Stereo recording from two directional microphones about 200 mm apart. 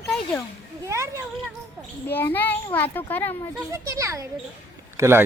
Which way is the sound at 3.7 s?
15° right (ahead or behind).